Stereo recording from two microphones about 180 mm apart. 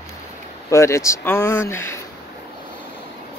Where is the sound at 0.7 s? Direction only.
15° left (ahead or behind).